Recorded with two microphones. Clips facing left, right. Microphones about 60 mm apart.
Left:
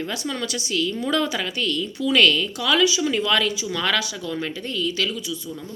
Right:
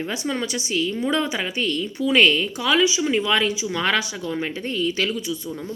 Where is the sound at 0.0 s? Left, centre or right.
Right.